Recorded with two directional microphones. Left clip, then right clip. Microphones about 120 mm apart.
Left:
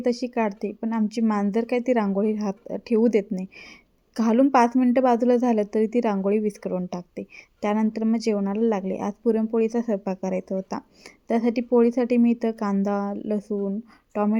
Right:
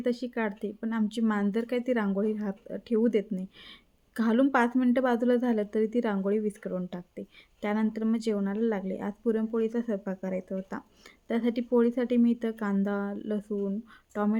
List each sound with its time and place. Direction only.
0.0 s a woman's voice: 25° left (ahead or behind)